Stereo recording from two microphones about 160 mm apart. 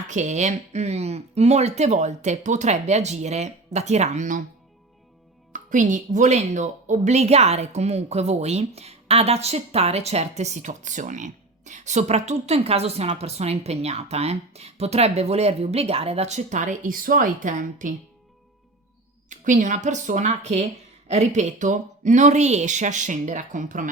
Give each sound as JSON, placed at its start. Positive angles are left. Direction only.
{"t": 0.1, "sound": "speech", "side_deg": -50}
{"t": 5.5, "sound": "music", "side_deg": -55}
{"t": 6.1, "sound": "a woman's voice", "side_deg": -45}
{"t": 19.3, "sound": "speech", "side_deg": -50}